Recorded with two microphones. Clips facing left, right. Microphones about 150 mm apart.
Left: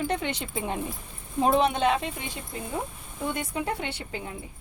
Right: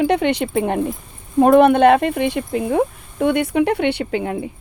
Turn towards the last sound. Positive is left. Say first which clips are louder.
# right 14 dB
turn(degrees=-75)  # may be behind; listen again after turning